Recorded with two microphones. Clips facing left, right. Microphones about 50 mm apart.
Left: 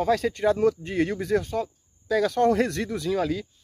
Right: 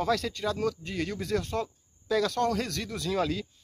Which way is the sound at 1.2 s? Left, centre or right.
Centre.